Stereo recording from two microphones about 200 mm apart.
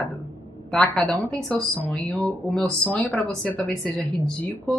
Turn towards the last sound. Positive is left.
turn(degrees=5)  # may be behind; listen again after turning